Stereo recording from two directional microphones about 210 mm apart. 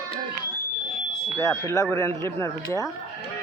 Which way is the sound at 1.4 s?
15° left (ahead or behind).